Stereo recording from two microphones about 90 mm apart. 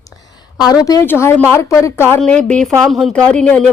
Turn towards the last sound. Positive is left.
turn(degrees=10)  # may be behind; listen again after turning